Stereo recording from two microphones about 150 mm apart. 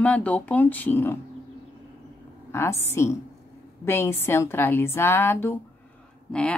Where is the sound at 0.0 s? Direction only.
10° left (ahead or behind).